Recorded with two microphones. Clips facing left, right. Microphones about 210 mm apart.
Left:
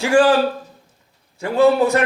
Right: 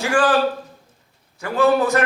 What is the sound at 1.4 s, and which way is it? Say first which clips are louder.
Speech: left 3 dB; 25° left (ahead or behind).